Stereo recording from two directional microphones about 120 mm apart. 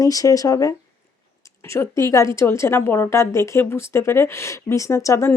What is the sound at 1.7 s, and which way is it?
Speech, 25° left (ahead or behind).